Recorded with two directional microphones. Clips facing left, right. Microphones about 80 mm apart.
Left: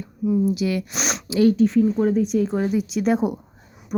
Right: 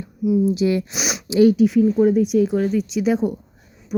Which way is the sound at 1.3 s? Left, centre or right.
Centre.